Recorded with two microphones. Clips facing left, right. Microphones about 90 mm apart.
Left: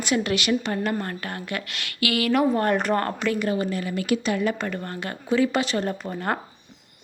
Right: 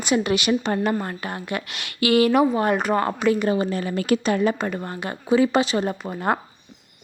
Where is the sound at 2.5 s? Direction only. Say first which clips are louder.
Right 1 dB; 5° right (ahead or behind).